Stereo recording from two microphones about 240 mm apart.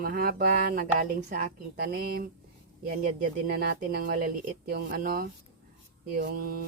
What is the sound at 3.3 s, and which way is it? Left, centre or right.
Speech, right.